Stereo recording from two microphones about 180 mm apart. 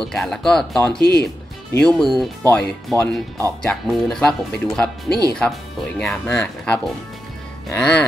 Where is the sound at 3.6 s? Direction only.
Centre (ahead or behind).